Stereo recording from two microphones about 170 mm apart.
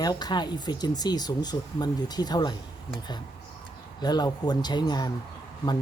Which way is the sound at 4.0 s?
25° left (ahead or behind).